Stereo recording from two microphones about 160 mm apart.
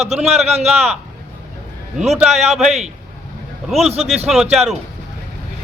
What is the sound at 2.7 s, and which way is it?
A man's voice, 45° right (ahead or behind).